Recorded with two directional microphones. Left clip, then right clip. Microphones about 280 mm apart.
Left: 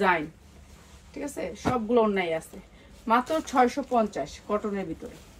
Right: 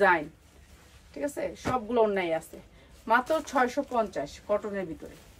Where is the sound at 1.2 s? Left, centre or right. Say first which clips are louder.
Left 1 dB; centre.